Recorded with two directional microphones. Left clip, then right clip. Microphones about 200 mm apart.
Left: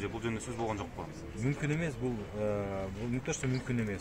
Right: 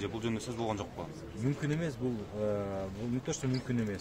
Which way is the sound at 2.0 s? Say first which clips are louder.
Even; 15° right (ahead or behind).